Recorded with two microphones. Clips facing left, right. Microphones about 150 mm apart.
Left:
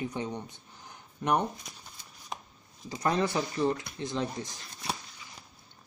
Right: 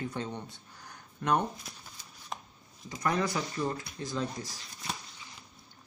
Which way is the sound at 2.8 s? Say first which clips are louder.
Left 2 dB; 30° left (ahead or behind).